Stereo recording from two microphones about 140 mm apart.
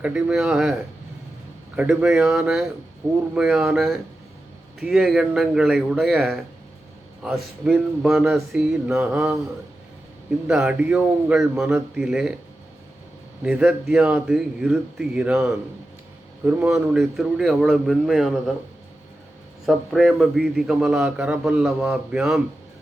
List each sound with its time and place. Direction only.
0.0 s speech: 5° right (ahead or behind)
7.6 s speech: 5° right (ahead or behind)
10.4 s speech: 5° right (ahead or behind)
13.4 s speech: 5° right (ahead or behind)
19.6 s speech: centre (ahead or behind)